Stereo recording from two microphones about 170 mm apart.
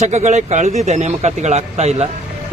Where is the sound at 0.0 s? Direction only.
40° right (ahead or behind).